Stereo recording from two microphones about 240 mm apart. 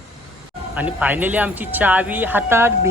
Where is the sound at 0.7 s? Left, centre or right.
Centre.